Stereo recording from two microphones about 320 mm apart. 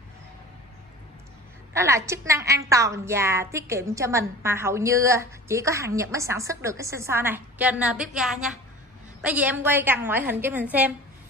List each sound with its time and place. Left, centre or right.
1.7 s a woman's voice: centre